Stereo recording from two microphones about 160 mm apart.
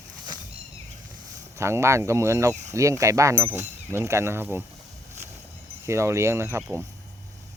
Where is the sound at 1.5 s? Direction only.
15° right (ahead or behind).